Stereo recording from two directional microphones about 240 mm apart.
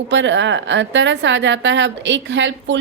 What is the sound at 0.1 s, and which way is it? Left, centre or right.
A woman's voice, right.